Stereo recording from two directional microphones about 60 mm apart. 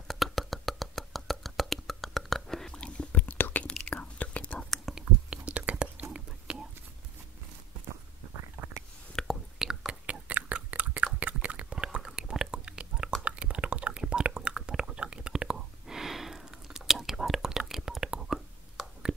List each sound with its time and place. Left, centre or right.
0.1 s beatboxing: centre
3.0 s whispering: left
3.6 s whispering: centre
4.6 s whispering: centre
5.3 s whispering: right
8.6 s a sound: right
9.2 s whispering: centre
9.6 s whispering: centre
10.2 s chewing: right
11.4 s whispering: centre
13.2 s a sound: centre